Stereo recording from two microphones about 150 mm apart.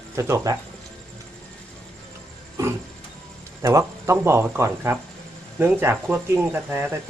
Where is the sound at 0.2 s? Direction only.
20° right (ahead or behind).